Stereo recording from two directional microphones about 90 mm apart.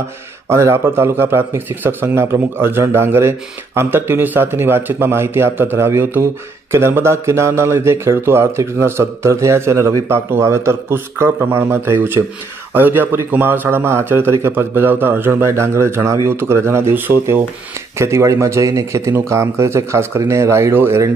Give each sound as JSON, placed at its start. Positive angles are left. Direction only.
{"t": 0.5, "sound": "speech", "side_deg": -30}